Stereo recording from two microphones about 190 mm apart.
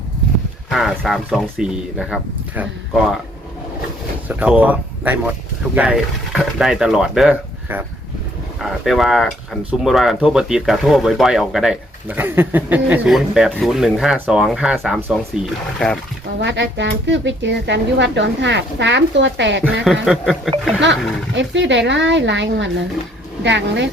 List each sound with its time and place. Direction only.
0.7 s speech: centre (ahead or behind)
4.3 s speech: 10° right (ahead or behind)
16.4 s speech: 70° right (ahead or behind)
19.8 s speech: centre (ahead or behind)
21.3 s speech: 70° right (ahead or behind)